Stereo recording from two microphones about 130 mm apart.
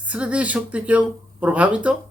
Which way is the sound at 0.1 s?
10° right (ahead or behind).